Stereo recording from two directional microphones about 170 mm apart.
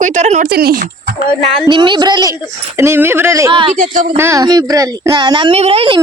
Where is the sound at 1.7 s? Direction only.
30° right (ahead or behind).